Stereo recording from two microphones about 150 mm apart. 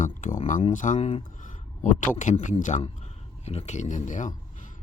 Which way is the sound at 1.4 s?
60° left (ahead or behind).